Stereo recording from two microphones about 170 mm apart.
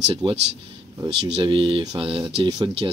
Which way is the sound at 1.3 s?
30° right (ahead or behind).